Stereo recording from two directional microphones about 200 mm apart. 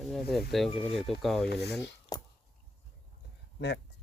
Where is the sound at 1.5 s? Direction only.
55° left (ahead or behind).